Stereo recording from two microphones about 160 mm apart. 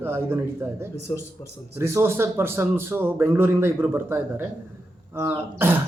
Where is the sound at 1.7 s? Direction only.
15° right (ahead or behind).